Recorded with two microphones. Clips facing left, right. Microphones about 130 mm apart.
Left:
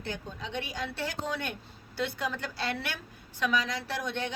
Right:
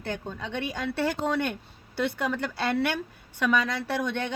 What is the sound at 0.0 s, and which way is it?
A woman's voice, 55° right (ahead or behind).